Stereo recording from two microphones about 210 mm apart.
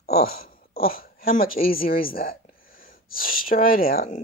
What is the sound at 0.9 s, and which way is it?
Speech, 45° left (ahead or behind).